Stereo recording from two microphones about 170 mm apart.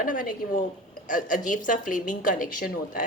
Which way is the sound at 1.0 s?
50° left (ahead or behind).